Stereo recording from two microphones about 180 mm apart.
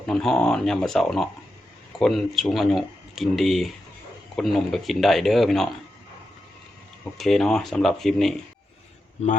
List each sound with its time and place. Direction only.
0.0 s speech: centre (ahead or behind)
7.0 s speech: centre (ahead or behind)